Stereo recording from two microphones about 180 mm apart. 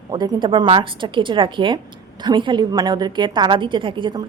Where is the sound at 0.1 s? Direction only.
20° right (ahead or behind).